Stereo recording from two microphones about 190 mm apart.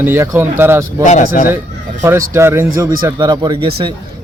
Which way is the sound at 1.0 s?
35° left (ahead or behind).